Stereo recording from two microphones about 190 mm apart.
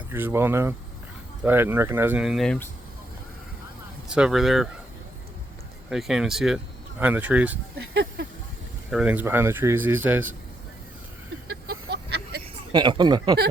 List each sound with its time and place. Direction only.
0.1 s speech: 10° right (ahead or behind)
4.1 s speech: 5° right (ahead or behind)
5.9 s speech: centre (ahead or behind)
8.9 s speech: 5° right (ahead or behind)
11.4 s a sound: 60° right (ahead or behind)
12.7 s speech: 25° right (ahead or behind)